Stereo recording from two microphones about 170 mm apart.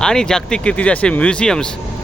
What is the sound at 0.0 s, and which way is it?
Speech, 5° left (ahead or behind).